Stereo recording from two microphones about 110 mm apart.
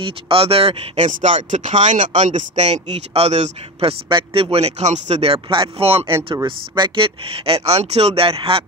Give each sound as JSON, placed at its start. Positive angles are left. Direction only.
{"t": 0.3, "sound": "speech", "side_deg": -60}
{"t": 4.1, "sound": "speech", "side_deg": -55}
{"t": 7.2, "sound": "speech", "side_deg": -60}